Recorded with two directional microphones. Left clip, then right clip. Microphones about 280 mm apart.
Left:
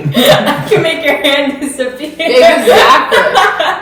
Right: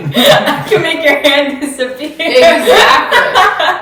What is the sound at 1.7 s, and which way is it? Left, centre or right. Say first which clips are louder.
Speech: even; centre.